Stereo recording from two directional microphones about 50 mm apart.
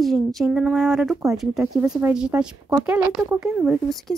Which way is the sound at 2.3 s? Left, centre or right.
Right.